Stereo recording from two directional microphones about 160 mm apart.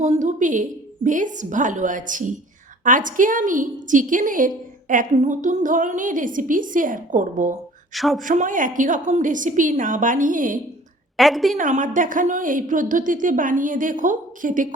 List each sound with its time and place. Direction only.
0.0 s a woman's voice: 50° right (ahead or behind)
7.9 s a woman's voice: centre (ahead or behind)
8.2 s a woman's voice: 55° right (ahead or behind)
11.2 s a woman's voice: centre (ahead or behind)
11.5 s a woman's voice: 50° right (ahead or behind)